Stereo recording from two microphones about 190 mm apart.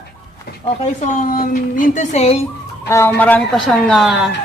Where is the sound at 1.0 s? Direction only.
45° left (ahead or behind).